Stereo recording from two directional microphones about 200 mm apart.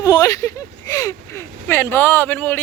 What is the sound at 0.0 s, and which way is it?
Speech, 15° left (ahead or behind).